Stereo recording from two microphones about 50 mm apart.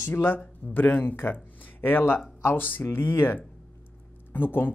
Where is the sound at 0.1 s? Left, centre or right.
Left.